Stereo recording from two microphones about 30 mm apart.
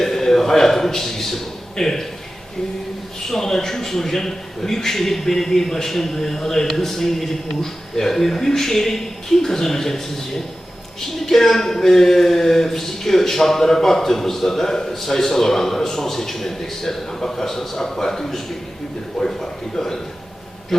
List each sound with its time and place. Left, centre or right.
0.0 s a sound: centre
1.7 s speech: centre
3.2 s speech: centre